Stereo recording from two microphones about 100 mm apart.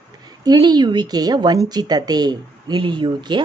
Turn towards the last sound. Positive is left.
turn(degrees=-50)  # may be behind; listen again after turning